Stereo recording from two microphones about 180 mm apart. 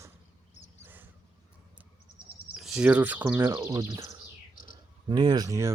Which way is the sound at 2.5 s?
5° right (ahead or behind).